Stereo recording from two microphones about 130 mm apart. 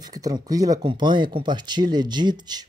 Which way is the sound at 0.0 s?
30° right (ahead or behind).